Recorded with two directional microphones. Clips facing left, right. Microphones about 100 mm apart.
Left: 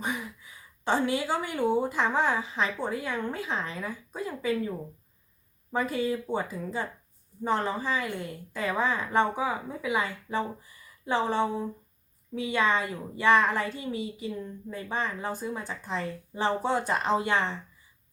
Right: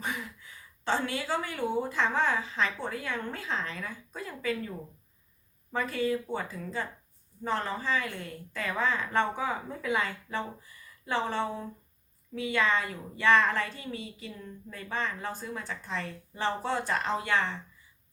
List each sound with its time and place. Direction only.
0.0 s a woman's voice: 15° left (ahead or behind)